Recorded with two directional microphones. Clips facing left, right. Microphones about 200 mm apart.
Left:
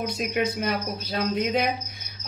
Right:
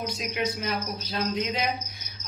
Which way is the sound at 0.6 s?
50° left (ahead or behind).